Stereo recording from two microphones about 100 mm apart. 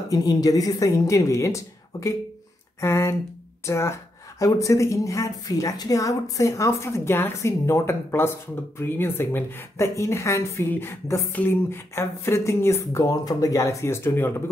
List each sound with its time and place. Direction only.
0.1 s a woman's voice: 35° left (ahead or behind)